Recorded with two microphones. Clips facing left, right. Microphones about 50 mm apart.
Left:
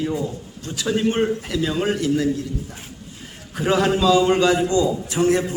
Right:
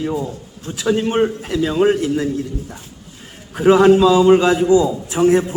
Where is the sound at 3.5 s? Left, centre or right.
Centre.